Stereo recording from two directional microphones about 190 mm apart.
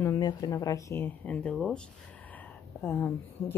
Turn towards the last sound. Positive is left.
turn(degrees=10)  # may be behind; listen again after turning